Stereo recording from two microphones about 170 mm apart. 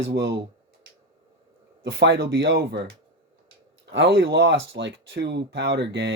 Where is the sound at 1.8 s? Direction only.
90° right.